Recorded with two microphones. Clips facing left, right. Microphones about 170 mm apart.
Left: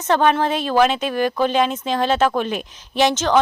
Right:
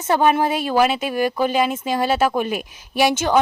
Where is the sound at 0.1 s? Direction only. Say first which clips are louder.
Even; 10° right (ahead or behind).